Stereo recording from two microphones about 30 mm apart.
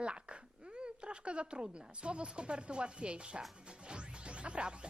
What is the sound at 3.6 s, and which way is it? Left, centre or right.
Music, right.